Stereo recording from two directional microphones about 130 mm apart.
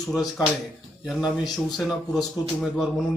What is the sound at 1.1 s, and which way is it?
Speech, 5° right (ahead or behind).